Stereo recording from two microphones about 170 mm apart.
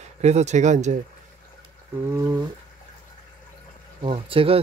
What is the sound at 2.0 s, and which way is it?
Speech, 15° right (ahead or behind).